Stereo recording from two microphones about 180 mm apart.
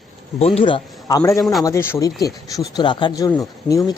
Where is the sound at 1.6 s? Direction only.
15° left (ahead or behind).